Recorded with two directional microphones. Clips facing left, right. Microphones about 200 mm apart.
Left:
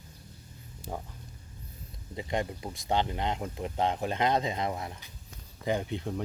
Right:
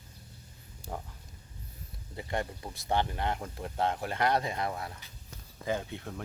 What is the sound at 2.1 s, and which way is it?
Speech, 15° left (ahead or behind).